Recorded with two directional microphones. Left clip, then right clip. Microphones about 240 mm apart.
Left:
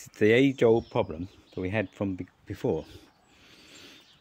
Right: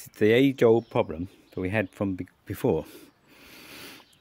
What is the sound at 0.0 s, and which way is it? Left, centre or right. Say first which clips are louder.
Speech: right 1 dB; centre.